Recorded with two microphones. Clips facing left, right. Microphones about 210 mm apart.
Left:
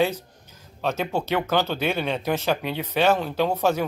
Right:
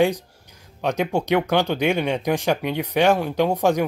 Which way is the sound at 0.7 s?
15° right (ahead or behind).